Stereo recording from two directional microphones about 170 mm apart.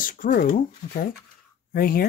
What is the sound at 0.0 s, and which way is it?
Speech, 55° left (ahead or behind).